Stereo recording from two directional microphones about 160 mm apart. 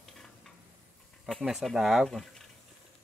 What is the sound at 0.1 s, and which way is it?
Stir, centre (ahead or behind).